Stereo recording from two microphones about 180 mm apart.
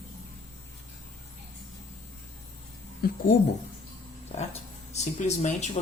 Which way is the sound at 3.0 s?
55° left (ahead or behind).